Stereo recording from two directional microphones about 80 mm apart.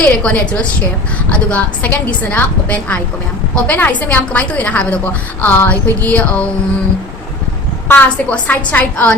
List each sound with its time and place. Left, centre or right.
0.0 s a woman's voice: centre
7.9 s a woman's voice: left